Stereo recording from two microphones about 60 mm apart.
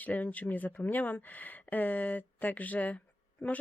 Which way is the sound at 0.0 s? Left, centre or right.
Left.